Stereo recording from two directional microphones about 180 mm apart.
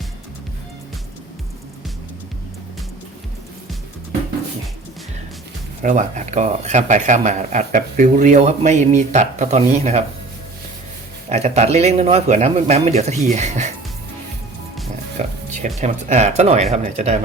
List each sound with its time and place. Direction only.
5.8 s speech: 40° right (ahead or behind)
11.3 s speech: 35° right (ahead or behind)
15.2 s music: 40° right (ahead or behind)
15.6 s speech: 40° right (ahead or behind)